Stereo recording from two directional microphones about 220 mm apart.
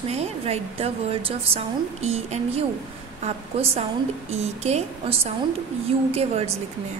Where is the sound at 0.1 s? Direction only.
30° right (ahead or behind).